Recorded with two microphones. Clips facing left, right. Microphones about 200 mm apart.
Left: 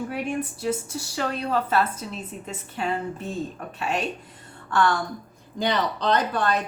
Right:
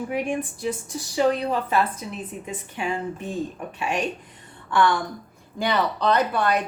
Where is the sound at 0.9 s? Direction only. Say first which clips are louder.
Right 7 dB; 15° right (ahead or behind).